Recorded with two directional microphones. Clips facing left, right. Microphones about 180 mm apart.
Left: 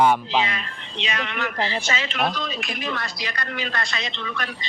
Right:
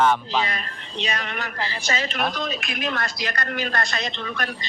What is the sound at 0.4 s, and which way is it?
A woman's voice, 40° right (ahead or behind).